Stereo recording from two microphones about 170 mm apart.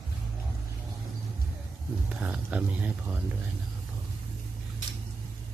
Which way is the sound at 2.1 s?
5° right (ahead or behind).